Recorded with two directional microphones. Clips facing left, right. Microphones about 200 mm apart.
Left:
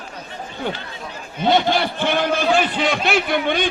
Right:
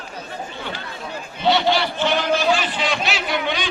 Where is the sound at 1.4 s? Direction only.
50° left (ahead or behind).